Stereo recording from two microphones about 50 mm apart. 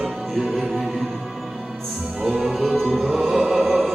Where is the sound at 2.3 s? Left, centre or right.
Centre.